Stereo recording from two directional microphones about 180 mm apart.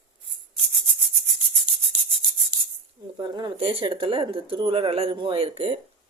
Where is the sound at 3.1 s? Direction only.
25° right (ahead or behind).